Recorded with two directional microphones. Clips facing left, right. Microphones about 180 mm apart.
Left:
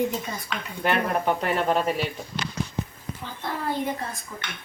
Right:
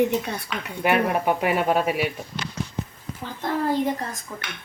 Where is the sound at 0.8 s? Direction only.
10° right (ahead or behind).